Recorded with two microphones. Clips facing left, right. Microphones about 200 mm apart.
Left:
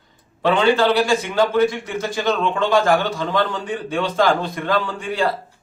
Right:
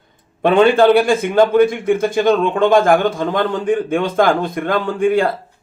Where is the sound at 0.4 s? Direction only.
55° right (ahead or behind).